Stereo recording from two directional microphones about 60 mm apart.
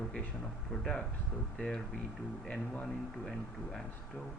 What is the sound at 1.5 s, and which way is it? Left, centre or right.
Speech, centre.